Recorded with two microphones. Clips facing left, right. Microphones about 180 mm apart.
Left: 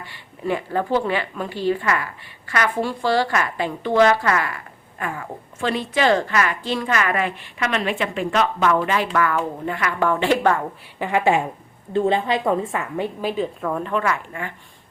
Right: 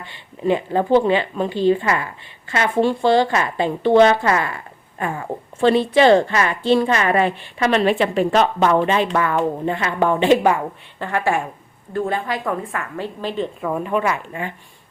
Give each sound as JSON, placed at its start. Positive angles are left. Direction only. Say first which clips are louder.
{"t": 0.0, "sound": "speech", "louder": "right 5 dB", "side_deg": -20}
{"t": 11.0, "sound": "a woman's voice", "louder": "left 2 dB", "side_deg": 15}
{"t": 13.2, "sound": "a woman's voice", "louder": "right 3 dB", "side_deg": 5}
{"t": 13.7, "sound": "speech", "louder": "right 4 dB", "side_deg": -10}